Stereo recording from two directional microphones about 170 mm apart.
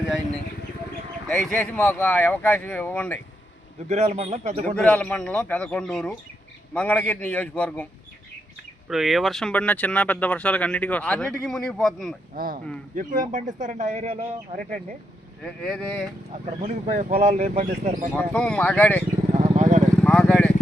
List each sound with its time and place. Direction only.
1.3 s speech: 5° left (ahead or behind)
3.8 s a man's voice: 40° right (ahead or behind)
4.6 s speech: 5° left (ahead or behind)
8.9 s speech: centre (ahead or behind)
12.3 s speech: 60° right (ahead or behind)
15.4 s speech: 5° left (ahead or behind)
16.6 s speech: 45° right (ahead or behind)
18.1 s speech: 10° left (ahead or behind)
19.3 s vehicle: 40° right (ahead or behind)
20.1 s vehicle: 5° left (ahead or behind)